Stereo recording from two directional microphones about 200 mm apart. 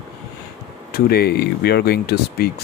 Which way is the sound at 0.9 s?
50° left (ahead or behind).